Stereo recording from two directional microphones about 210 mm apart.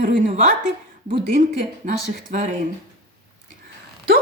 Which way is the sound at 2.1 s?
40° right (ahead or behind).